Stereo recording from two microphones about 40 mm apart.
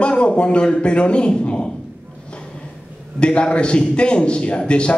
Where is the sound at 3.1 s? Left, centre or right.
Left.